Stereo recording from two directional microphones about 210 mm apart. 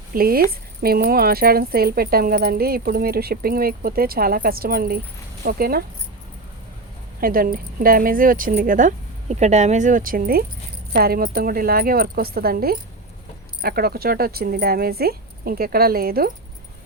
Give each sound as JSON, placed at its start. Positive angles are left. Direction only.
{"t": 0.1, "sound": "speech", "side_deg": -45}
{"t": 7.2, "sound": "speech", "side_deg": -45}